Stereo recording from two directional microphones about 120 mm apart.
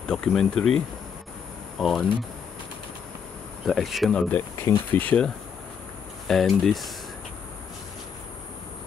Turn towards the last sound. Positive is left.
turn(degrees=0)  # may be behind; listen again after turning